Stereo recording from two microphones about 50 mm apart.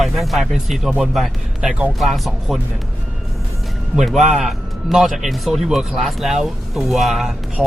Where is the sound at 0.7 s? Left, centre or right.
Centre.